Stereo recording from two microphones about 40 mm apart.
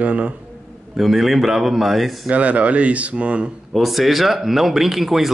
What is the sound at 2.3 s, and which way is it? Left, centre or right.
Speech, right.